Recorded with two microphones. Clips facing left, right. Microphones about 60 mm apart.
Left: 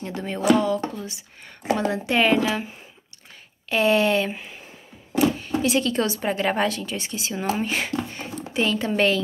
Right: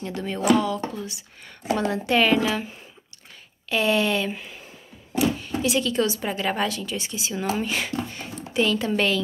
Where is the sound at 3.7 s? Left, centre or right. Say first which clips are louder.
Left 3 dB; left.